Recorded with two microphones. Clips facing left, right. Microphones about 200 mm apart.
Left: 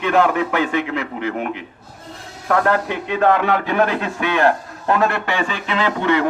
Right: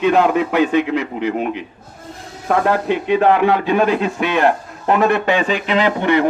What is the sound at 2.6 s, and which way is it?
A man's voice, 15° right (ahead or behind).